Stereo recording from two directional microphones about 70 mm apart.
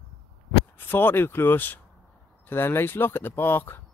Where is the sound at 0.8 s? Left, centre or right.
Left.